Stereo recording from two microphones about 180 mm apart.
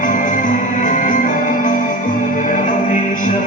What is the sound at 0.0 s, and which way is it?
Music, 45° left (ahead or behind).